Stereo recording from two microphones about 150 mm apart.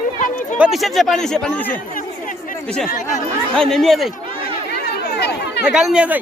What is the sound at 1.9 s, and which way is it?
Chatter, 60° left (ahead or behind).